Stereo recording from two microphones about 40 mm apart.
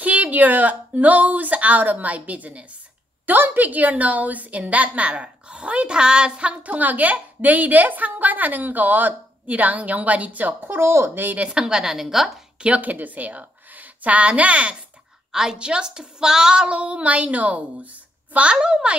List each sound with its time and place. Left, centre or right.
0.0 s a woman's voice: right
6.6 s a woman's voice: right
11.3 s a woman's voice: right; by 12.3 s centre
12.5 s speech: right
12.8 s a woman's voice: right
15.3 s a woman's voice: centre